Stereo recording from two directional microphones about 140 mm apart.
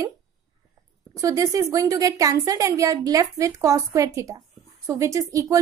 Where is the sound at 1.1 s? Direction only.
25° right (ahead or behind).